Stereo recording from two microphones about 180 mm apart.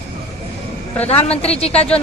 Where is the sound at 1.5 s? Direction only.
35° left (ahead or behind).